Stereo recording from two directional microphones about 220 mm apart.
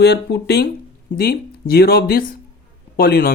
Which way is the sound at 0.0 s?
50° left (ahead or behind).